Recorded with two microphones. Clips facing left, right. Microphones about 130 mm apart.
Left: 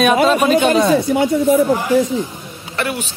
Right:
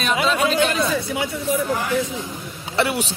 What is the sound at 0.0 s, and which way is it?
Speech, 55° left (ahead or behind).